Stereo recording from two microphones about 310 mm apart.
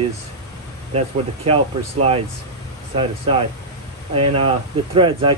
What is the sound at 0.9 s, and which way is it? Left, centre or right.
Speech, centre.